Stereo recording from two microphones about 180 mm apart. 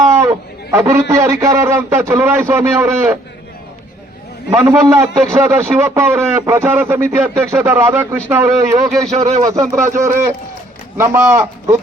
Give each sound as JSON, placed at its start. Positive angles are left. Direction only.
{"t": 0.0, "sound": "a man's voice", "side_deg": -15}
{"t": 4.5, "sound": "a man's voice", "side_deg": -15}
{"t": 9.1, "sound": "speech", "side_deg": -40}
{"t": 10.0, "sound": "a man's voice", "side_deg": -15}